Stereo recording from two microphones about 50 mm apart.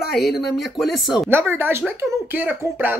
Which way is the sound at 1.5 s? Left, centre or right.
Right.